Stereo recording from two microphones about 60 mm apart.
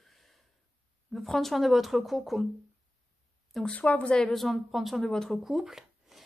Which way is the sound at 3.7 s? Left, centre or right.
Left.